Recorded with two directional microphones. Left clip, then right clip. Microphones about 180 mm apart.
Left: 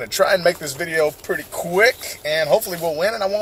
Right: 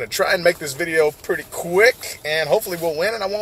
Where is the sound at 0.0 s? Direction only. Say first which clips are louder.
Left 1 dB; 20° right (ahead or behind).